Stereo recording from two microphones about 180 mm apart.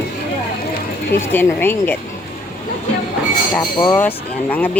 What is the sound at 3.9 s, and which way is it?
Speech, 10° left (ahead or behind).